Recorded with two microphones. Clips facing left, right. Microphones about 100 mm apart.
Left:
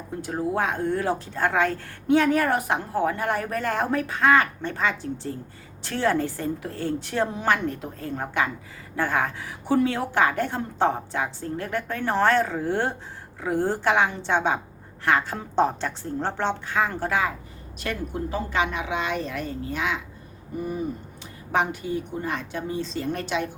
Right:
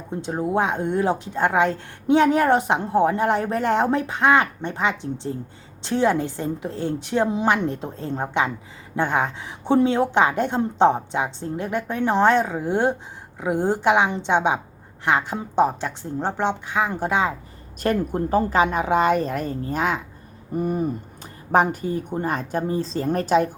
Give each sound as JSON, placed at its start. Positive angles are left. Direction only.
{"t": 0.1, "sound": "a woman's voice", "side_deg": -20}
{"t": 17.8, "sound": "a woman's voice", "side_deg": -45}